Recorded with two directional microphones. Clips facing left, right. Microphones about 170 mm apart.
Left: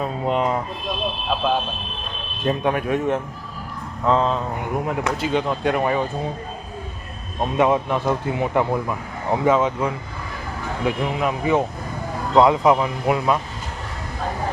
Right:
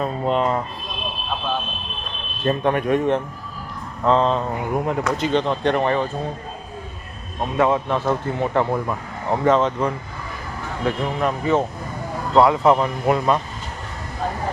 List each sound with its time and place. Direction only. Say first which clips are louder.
0.0 s speech: right 1 dB; 10° left (ahead or behind)
2.4 s speech: right 1 dB; 10° left (ahead or behind)
7.5 s speech: even; 20° left (ahead or behind)
12.7 s speech: right 1 dB; 5° left (ahead or behind)